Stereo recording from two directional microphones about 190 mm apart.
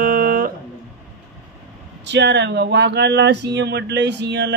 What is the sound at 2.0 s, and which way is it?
Speech, 65° right (ahead or behind).